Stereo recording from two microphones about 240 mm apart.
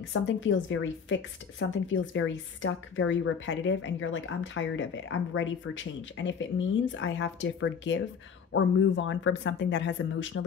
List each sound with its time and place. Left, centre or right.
0.1 s speech: left